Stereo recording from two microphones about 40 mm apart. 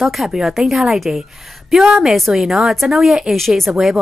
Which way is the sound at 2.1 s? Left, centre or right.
Centre.